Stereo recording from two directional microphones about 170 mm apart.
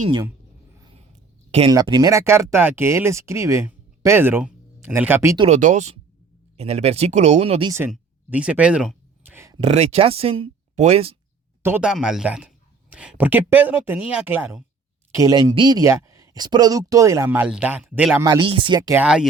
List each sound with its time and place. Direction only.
1.5 s speech: 35° right (ahead or behind)
1.7 s speech: 25° right (ahead or behind)
5.5 s speech: 45° right (ahead or behind)
7.9 s speech: 5° right (ahead or behind)
9.2 s a sound: 15° right (ahead or behind)
9.6 s speech: 35° right (ahead or behind)
11.6 s speech: 10° right (ahead or behind)
18.3 s speech: 30° right (ahead or behind)
18.9 s speech: 5° right (ahead or behind)